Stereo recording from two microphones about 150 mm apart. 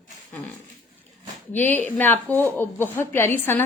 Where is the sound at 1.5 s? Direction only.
15° left (ahead or behind).